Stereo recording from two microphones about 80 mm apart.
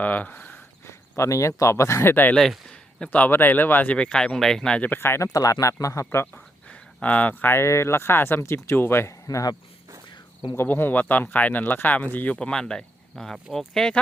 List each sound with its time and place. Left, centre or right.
0.0 s speech: centre
0.9 s speech: left
3.9 s speech: centre
4.8 s speech: left
5.3 s speech: left
6.3 s speech: centre
9.2 s speech: left
10.5 s speech: left
12.4 s speech: centre